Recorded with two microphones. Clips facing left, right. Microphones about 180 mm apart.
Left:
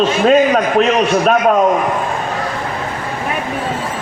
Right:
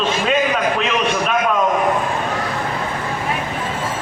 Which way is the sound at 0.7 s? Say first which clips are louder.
Left 7 dB; 40° left (ahead or behind).